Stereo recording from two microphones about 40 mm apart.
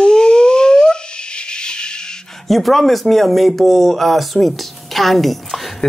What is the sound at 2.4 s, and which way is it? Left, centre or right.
Speech, centre.